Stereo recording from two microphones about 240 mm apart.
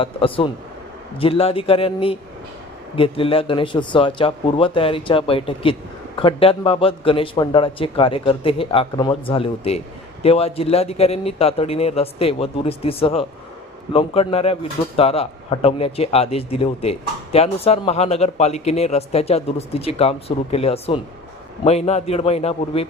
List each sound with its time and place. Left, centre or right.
0.0 s speech: left